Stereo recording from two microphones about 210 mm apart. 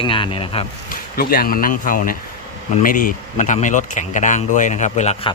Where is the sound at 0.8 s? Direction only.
45° left (ahead or behind).